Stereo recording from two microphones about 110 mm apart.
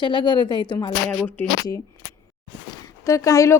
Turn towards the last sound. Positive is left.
turn(degrees=30)  # may be behind; listen again after turning